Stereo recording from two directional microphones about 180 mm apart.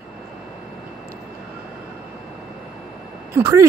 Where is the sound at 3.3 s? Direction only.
15° right (ahead or behind).